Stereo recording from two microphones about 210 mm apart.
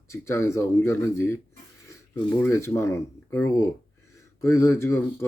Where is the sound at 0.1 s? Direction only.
15° left (ahead or behind).